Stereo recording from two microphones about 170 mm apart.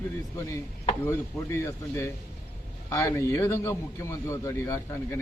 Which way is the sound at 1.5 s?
15° left (ahead or behind).